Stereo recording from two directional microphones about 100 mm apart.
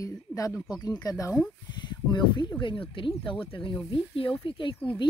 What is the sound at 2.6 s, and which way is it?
Speech, 60° left (ahead or behind).